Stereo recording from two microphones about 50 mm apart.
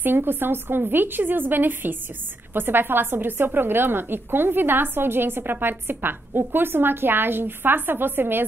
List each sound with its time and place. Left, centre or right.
0.0 s a woman's voice: right